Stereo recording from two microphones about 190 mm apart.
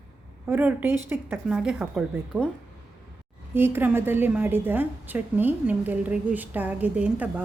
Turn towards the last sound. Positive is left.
turn(degrees=-5)  # may be behind; listen again after turning